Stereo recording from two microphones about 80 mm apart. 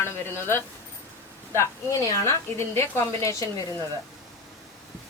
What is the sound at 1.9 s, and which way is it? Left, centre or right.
Speech, left.